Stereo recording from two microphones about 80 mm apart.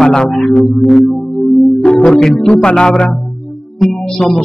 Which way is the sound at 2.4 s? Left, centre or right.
Centre.